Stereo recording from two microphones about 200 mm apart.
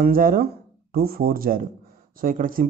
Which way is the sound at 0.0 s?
45° right (ahead or behind).